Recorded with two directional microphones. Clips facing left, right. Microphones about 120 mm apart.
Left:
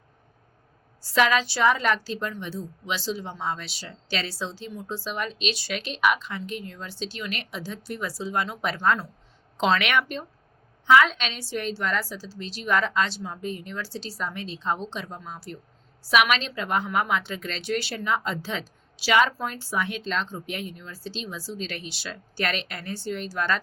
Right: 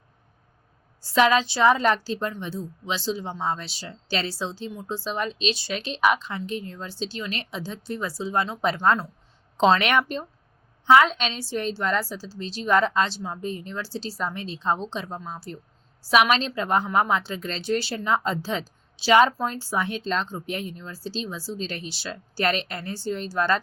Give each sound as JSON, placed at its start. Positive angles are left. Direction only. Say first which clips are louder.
{"t": 1.1, "sound": "a woman's voice", "louder": "right 3 dB", "side_deg": -30}